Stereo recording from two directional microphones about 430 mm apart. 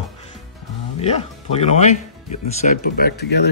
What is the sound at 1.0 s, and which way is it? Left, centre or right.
Speech, centre.